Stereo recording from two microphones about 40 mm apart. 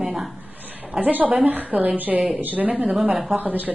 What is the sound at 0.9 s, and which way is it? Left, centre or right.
A woman's voice, right.